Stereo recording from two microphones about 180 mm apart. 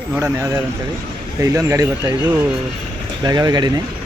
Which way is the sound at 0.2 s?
15° right (ahead or behind).